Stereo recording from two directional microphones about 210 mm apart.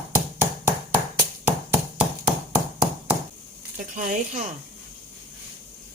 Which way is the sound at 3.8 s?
40° right (ahead or behind).